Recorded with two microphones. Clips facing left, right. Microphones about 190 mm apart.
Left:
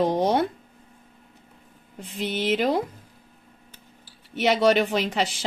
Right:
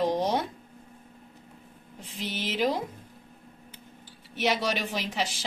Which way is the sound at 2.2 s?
55° left (ahead or behind).